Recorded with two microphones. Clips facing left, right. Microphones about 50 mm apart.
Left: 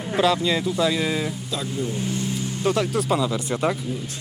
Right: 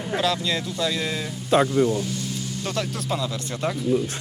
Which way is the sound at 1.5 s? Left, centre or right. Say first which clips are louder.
Right 9 dB; right.